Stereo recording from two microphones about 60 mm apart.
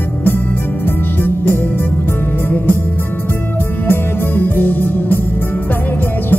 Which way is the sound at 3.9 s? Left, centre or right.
Left.